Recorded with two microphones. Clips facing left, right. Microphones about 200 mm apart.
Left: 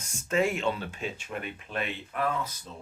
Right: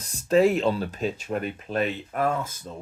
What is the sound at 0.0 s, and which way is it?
Speech, 35° right (ahead or behind).